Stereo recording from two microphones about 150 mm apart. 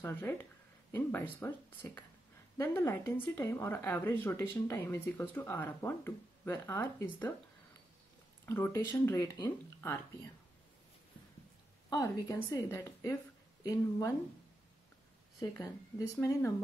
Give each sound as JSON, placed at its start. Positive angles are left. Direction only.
{"t": 0.0, "sound": "speech", "side_deg": 15}
{"t": 8.5, "sound": "speech", "side_deg": 15}
{"t": 11.9, "sound": "a woman's voice", "side_deg": 20}
{"t": 15.5, "sound": "a woman's voice", "side_deg": 20}